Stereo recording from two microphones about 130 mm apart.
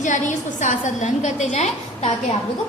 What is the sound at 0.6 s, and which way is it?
A woman's voice, 65° left (ahead or behind).